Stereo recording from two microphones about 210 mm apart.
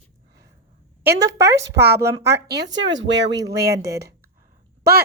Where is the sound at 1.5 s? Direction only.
55° right (ahead or behind).